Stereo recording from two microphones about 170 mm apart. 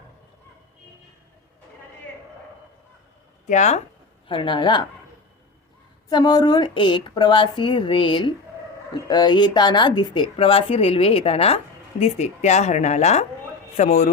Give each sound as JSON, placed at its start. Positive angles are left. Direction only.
{"t": 3.4, "sound": "speech", "side_deg": 45}
{"t": 4.3, "sound": "speech", "side_deg": 30}
{"t": 6.1, "sound": "speech", "side_deg": 25}